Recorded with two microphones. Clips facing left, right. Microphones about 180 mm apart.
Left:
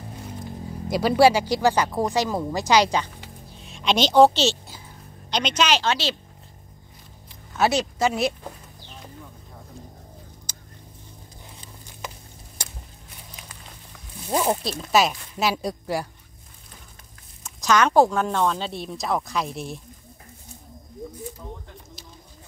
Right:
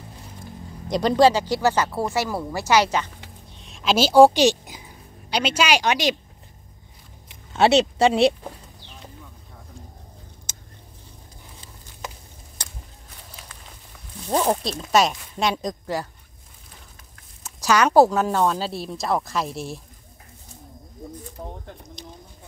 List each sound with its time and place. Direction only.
0.8 s speech: 5° left (ahead or behind)
3.5 s a woman's voice: centre (ahead or behind); by 6.1 s 15° right (ahead or behind)
7.5 s speech: 25° right (ahead or behind)
10.5 s vehicle: 25° right (ahead or behind)
14.2 s speech: 5° left (ahead or behind)
17.4 s speech: 10° right (ahead or behind)
21.4 s speech: 50° right (ahead or behind)